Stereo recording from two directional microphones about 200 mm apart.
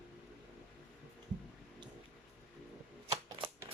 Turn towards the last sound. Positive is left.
turn(degrees=-20)  # may be behind; listen again after turning